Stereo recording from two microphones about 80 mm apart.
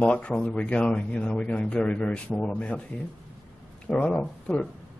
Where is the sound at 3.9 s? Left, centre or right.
Centre.